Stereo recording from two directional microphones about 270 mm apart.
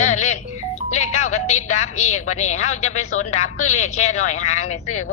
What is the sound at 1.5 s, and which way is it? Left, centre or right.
A man's voice, left.